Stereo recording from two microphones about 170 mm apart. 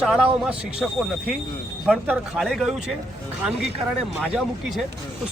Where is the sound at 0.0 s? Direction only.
5° right (ahead or behind).